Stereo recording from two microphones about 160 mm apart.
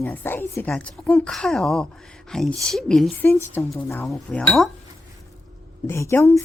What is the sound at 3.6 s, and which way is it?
Speech, 15° left (ahead or behind).